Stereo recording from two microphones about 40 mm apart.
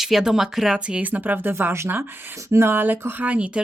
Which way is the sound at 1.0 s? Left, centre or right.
Right.